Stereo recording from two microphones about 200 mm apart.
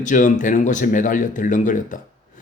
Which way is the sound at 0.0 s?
40° left (ahead or behind).